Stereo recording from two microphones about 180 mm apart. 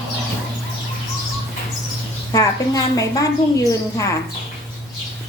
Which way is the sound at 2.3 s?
20° left (ahead or behind).